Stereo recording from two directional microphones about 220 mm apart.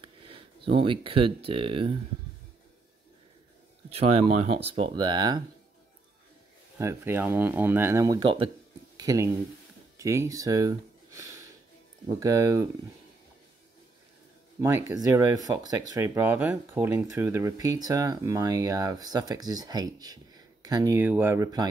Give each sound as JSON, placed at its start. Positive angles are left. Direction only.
{"t": 0.7, "sound": "speech", "side_deg": -25}
{"t": 3.9, "sound": "speech", "side_deg": -25}
{"t": 6.8, "sound": "speech", "side_deg": -10}
{"t": 14.6, "sound": "speech", "side_deg": -10}